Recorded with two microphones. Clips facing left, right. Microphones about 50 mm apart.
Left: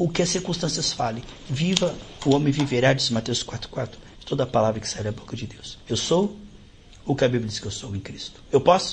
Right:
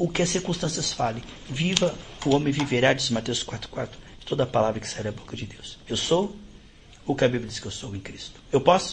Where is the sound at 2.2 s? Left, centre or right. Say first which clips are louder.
Left 2 dB; right.